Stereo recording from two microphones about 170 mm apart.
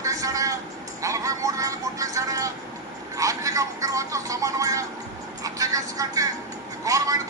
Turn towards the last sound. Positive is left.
turn(degrees=-20)  # may be behind; listen again after turning